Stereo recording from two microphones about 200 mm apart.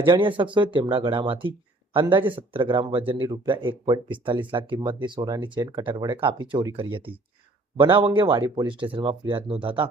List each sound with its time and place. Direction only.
0.0 s speech: 25° right (ahead or behind)